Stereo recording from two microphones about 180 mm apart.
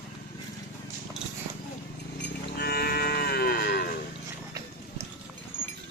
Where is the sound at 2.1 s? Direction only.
65° left (ahead or behind).